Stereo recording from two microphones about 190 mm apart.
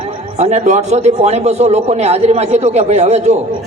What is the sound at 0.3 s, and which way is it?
A man's voice, 35° right (ahead or behind).